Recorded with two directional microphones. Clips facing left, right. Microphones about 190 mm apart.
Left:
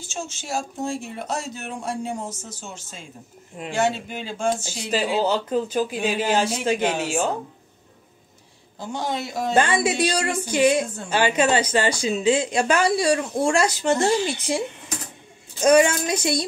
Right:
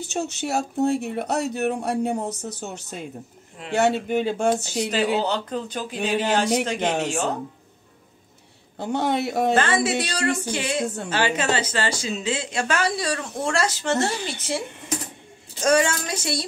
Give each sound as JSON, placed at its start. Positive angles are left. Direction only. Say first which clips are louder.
{"t": 0.0, "sound": "speech", "louder": "right 7 dB", "side_deg": -65}
{"t": 4.9, "sound": "a woman's voice", "louder": "left 2 dB", "side_deg": 5}
{"t": 8.7, "sound": "speech", "louder": "right 4 dB", "side_deg": -60}
{"t": 9.6, "sound": "a woman's voice", "louder": "left 2 dB", "side_deg": 15}
{"t": 15.6, "sound": "a woman's voice", "louder": "left 4 dB", "side_deg": 15}